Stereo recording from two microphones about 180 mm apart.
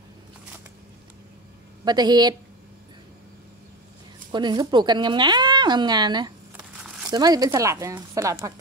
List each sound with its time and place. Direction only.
1.9 s speech: 25° right (ahead or behind)
4.3 s speech: 25° right (ahead or behind)
6.5 s a sound: 5° right (ahead or behind)
7.1 s speech: 20° right (ahead or behind)